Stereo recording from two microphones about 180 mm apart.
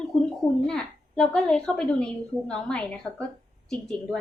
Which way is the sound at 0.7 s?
5° left (ahead or behind).